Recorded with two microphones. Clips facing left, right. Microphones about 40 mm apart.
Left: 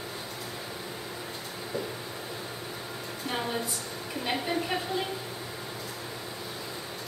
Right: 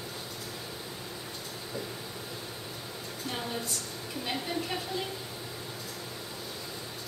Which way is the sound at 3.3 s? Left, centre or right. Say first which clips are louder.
Left 5 dB; left.